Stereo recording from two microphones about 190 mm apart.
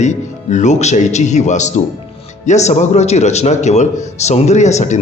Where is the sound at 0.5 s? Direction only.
40° left (ahead or behind).